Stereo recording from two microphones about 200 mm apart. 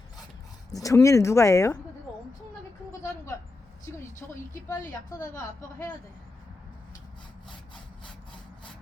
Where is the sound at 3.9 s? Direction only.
15° left (ahead or behind).